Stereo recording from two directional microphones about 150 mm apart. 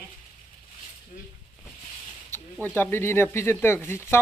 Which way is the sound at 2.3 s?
15° left (ahead or behind).